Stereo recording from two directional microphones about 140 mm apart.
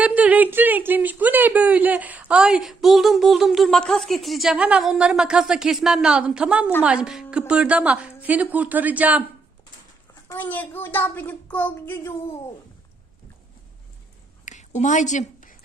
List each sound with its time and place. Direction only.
0.0 s a woman's voice: 10° right (ahead or behind)
10.3 s a woman's voice: 10° left (ahead or behind)
14.4 s a sound: 60° left (ahead or behind)